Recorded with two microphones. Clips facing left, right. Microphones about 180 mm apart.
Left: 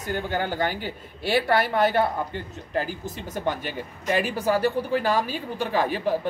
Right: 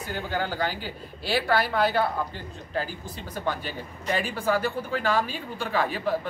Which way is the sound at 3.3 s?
20° left (ahead or behind).